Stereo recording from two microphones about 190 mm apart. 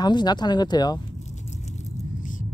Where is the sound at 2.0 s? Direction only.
45° left (ahead or behind).